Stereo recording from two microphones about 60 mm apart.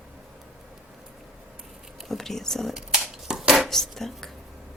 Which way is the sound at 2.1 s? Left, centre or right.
Centre.